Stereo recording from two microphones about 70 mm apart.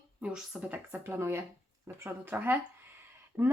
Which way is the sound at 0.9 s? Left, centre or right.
Right.